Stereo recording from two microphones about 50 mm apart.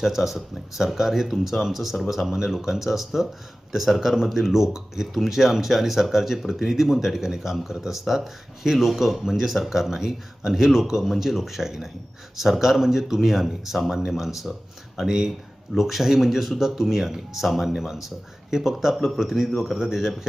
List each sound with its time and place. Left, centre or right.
0.0 s speech: centre